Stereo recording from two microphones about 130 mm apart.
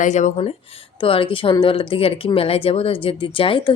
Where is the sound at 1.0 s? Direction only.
45° left (ahead or behind).